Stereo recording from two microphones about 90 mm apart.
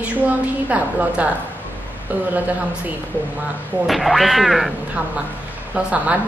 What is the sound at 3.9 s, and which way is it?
Speech, centre (ahead or behind).